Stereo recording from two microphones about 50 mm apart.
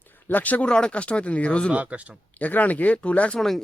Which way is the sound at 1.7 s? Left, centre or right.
Right.